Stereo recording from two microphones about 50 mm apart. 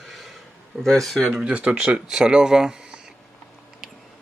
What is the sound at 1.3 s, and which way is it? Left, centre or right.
Speech, centre.